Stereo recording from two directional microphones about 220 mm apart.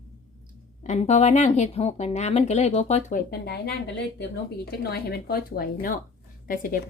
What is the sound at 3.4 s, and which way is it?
A woman's voice, 45° left (ahead or behind).